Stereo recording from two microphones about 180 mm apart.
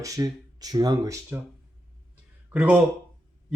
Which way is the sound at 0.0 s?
20° right (ahead or behind).